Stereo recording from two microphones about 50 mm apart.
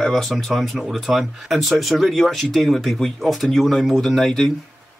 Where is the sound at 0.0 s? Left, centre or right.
Centre.